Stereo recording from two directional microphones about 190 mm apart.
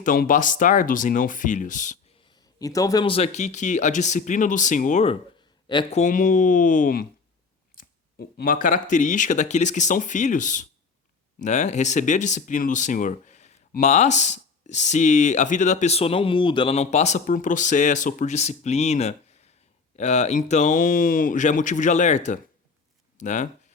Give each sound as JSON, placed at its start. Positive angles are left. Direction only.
{"t": 0.0, "sound": "speech", "side_deg": 45}
{"t": 2.2, "sound": "speech", "side_deg": 20}
{"t": 5.6, "sound": "speech", "side_deg": 25}
{"t": 6.0, "sound": "speech", "side_deg": 45}
{"t": 8.4, "sound": "speech", "side_deg": 45}